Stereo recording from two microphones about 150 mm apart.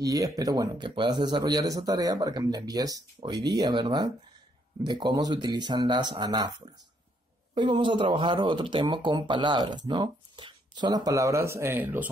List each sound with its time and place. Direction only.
0.0 s speech: 25° right (ahead or behind)